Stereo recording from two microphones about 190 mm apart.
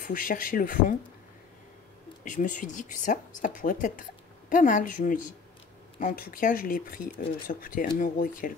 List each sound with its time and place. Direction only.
0.0 s a woman's voice: 45° left (ahead or behind)
2.2 s a woman's voice: 40° left (ahead or behind)